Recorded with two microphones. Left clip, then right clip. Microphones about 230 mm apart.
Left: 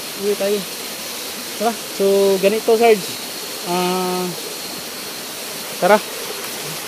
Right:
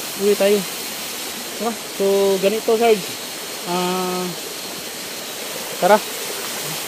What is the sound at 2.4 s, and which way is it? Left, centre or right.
Speech, centre.